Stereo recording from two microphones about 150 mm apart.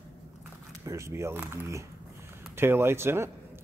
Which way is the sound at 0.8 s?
20° right (ahead or behind).